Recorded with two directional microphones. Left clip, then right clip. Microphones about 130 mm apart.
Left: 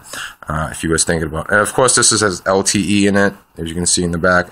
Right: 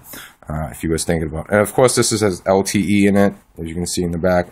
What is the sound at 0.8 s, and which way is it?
Speech, 15° right (ahead or behind).